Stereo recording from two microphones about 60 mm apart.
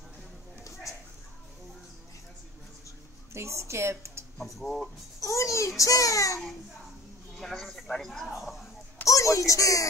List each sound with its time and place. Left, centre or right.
3.3 s speech: right
4.4 s speech: centre
5.2 s a sound: left
5.8 s a child's voice: left
7.3 s speech: centre
9.0 s speech: left